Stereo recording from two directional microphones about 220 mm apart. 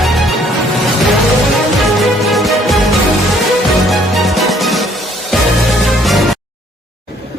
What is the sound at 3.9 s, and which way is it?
Music, centre (ahead or behind).